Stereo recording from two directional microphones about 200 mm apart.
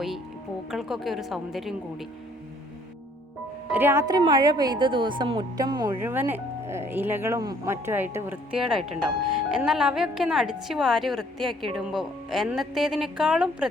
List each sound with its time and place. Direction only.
0.7 s a woman's voice: centre (ahead or behind)
3.7 s a woman's voice: 10° right (ahead or behind)
6.0 s a woman's voice: 10° right (ahead or behind)